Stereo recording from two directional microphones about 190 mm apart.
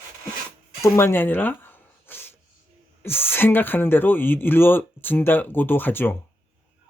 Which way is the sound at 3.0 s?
10° left (ahead or behind).